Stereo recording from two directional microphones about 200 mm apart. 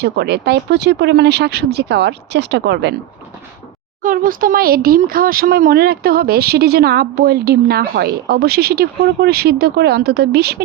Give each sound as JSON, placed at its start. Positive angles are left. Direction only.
{"t": 0.0, "sound": "speech", "side_deg": -55}
{"t": 4.0, "sound": "speech", "side_deg": -45}